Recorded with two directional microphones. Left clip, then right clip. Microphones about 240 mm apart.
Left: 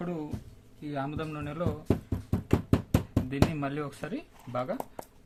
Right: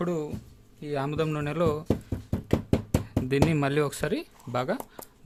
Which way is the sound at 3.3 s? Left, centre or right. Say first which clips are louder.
Right 7 dB; right.